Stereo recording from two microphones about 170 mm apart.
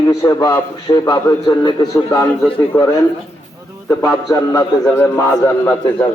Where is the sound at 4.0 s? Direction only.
20° left (ahead or behind).